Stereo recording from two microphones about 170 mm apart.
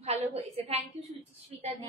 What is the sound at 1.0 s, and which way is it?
Speech, 40° right (ahead or behind).